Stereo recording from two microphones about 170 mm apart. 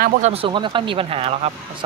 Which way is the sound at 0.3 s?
30° right (ahead or behind).